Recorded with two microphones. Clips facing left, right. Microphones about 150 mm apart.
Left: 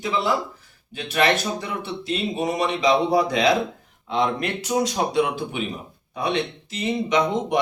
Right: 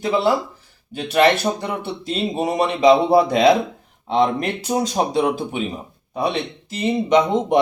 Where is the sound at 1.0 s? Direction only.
35° right (ahead or behind).